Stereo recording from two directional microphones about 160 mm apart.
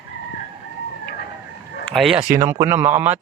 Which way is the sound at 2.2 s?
15° right (ahead or behind).